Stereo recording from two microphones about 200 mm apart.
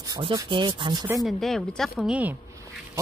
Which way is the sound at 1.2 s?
Centre (ahead or behind).